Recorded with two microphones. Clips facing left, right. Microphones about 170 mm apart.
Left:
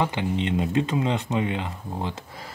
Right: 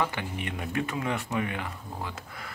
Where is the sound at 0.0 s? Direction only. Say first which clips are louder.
Left 6 dB; 20° left (ahead or behind).